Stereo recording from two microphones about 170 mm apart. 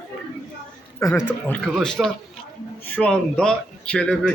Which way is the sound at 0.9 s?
15° left (ahead or behind).